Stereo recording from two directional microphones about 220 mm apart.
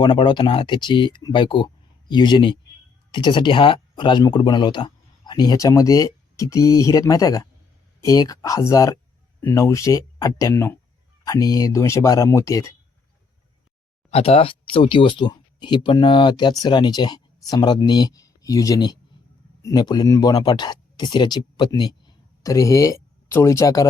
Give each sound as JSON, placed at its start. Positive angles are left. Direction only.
{"t": 0.0, "sound": "speech", "side_deg": 20}
{"t": 14.1, "sound": "speech", "side_deg": 25}